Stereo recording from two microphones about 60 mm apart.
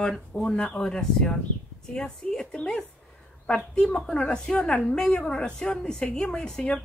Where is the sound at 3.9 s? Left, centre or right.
Centre.